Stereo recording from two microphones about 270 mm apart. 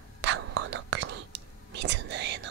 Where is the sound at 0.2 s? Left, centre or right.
Right.